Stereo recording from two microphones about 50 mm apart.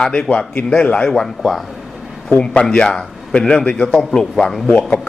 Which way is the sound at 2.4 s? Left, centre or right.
Centre.